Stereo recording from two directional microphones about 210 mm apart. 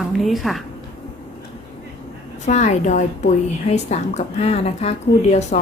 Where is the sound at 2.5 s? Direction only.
35° left (ahead or behind).